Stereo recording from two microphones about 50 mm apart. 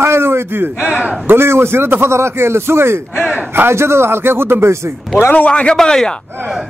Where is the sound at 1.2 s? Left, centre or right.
Right.